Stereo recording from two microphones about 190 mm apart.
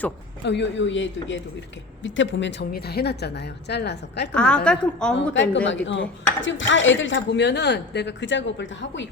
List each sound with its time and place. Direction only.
0.4 s a woman's voice: 65° left (ahead or behind)
4.4 s a woman's voice: 5° left (ahead or behind)
5.6 s speech: 75° left (ahead or behind)